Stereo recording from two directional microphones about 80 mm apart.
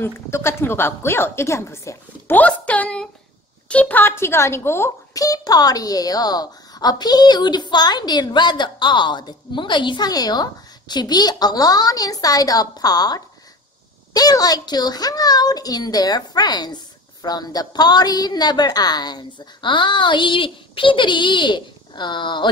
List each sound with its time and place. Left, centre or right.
0.0 s a woman's voice: left
2.3 s a woman's voice: centre
4.0 s a woman's voice: left
5.1 s a woman's voice: left